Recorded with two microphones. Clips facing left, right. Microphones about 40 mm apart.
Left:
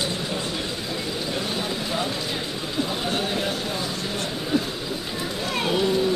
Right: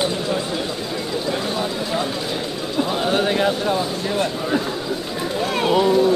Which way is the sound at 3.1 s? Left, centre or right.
Right.